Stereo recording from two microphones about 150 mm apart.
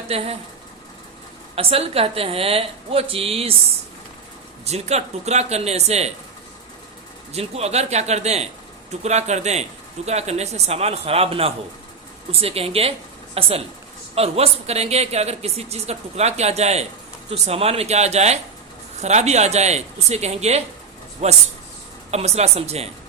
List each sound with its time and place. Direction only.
0.1 s a woman's voice: 40° right (ahead or behind)
1.5 s a woman's voice: 40° right (ahead or behind)
4.6 s speech: 45° right (ahead or behind)
7.3 s a woman's voice: 45° right (ahead or behind)
22.1 s speech: 45° right (ahead or behind)